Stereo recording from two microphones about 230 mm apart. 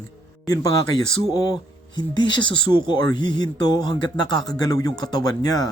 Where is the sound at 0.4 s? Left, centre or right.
Centre.